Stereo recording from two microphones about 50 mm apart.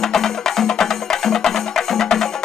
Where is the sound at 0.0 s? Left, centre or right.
Centre.